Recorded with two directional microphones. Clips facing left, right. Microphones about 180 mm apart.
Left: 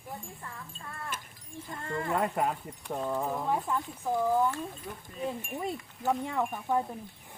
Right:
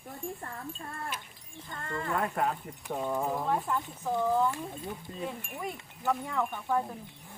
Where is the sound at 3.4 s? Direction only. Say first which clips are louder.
Even; 10° left (ahead or behind).